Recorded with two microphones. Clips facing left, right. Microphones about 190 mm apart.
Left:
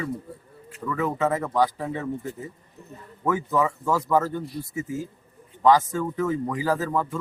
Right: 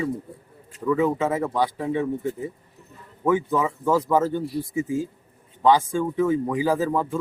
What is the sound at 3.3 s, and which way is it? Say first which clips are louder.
Speech: right 2 dB; 15° right (ahead or behind).